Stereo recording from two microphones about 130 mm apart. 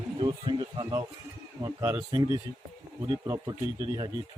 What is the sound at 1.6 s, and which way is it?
Speech, 25° right (ahead or behind).